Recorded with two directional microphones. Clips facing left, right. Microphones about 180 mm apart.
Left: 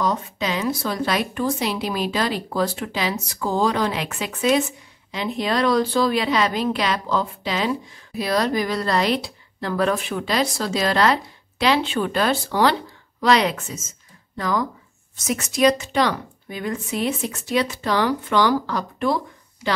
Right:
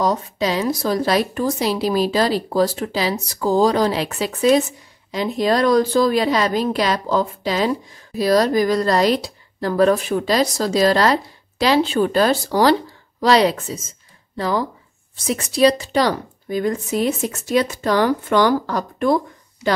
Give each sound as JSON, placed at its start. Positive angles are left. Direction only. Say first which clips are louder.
{"t": 0.0, "sound": "a woman's voice", "louder": "right 4 dB", "side_deg": -35}